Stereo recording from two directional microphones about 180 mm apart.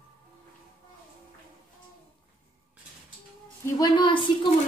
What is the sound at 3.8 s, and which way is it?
Speech, 25° left (ahead or behind).